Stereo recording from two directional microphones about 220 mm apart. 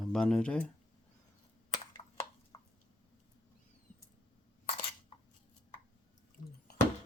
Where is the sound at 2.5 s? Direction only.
20° left (ahead or behind).